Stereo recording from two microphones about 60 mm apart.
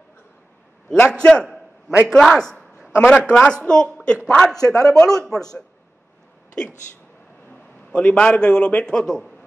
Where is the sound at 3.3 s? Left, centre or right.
Centre.